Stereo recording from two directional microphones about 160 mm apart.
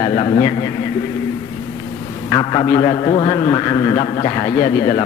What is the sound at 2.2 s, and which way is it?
Speech, 30° left (ahead or behind).